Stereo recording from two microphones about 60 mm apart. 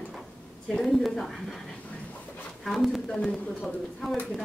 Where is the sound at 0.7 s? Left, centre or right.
Centre.